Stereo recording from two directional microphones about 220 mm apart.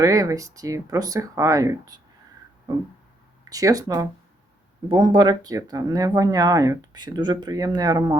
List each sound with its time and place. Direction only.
0.0 s speech: 15° right (ahead or behind)
3.5 s speech: 15° right (ahead or behind)